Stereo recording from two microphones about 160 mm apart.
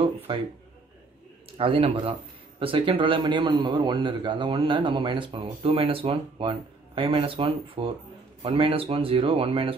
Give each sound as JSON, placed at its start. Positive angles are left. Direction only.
{"t": 0.3, "sound": "a man's voice", "side_deg": -35}
{"t": 1.6, "sound": "a man's voice", "side_deg": -35}